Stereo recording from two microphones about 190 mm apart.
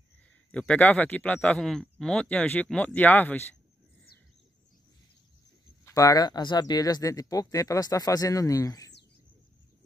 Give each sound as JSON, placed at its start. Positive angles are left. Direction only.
{"t": 0.5, "sound": "speech", "side_deg": 5}
{"t": 5.9, "sound": "speech", "side_deg": 15}